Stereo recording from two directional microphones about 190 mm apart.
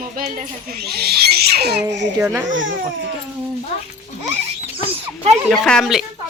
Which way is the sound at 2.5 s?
80° right.